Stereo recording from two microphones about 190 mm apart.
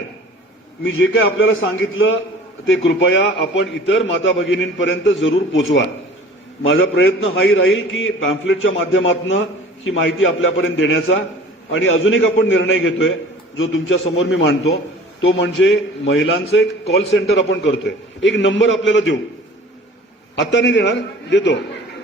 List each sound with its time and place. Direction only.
0.9 s a man's voice: 90° left
6.7 s a man's voice: 90° left; by 14.8 s 60° left (ahead or behind)
15.2 s a man's voice: 80° left
20.4 s a man's voice: 70° left (ahead or behind)